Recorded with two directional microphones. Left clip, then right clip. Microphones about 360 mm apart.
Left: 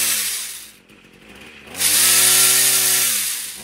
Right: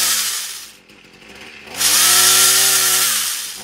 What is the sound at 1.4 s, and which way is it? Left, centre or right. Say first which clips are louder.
Tools: right 4 dB; right.